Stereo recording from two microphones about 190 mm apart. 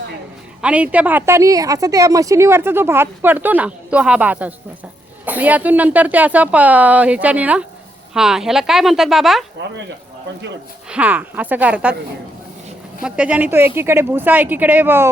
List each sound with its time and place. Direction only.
0.6 s a woman's voice: 5° right (ahead or behind)
10.8 s a woman's voice: 5° right (ahead or behind)
13.0 s a woman's voice: 5° right (ahead or behind)